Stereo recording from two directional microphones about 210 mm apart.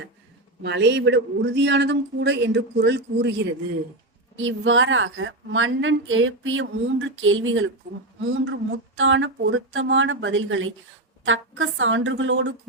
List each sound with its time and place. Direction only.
0.6 s speech: 55° right (ahead or behind)
4.4 s a woman's voice: 65° right (ahead or behind)